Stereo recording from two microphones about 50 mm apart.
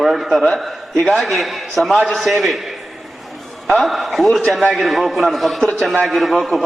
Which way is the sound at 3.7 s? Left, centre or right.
Centre.